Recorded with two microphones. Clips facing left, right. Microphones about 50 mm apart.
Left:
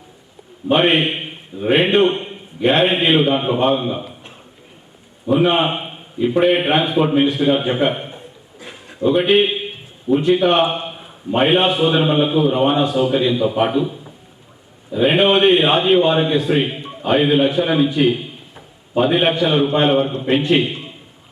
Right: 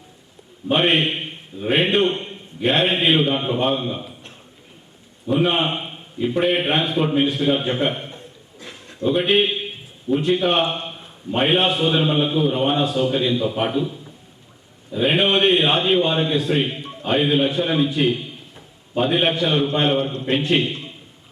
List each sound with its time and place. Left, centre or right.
0.7 s a man's voice: centre